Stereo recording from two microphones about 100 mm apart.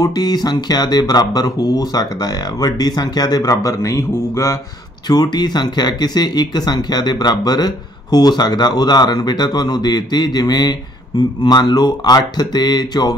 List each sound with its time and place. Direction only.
0.0 s speech: 40° left (ahead or behind)
5.0 s speech: 45° left (ahead or behind)